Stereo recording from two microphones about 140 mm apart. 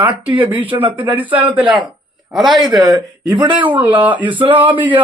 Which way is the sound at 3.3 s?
35° right (ahead or behind).